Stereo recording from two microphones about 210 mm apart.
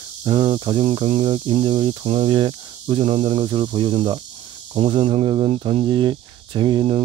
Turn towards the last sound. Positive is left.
turn(degrees=-25)  # may be behind; listen again after turning